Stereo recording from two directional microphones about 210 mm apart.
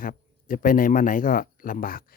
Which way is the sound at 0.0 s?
40° left (ahead or behind).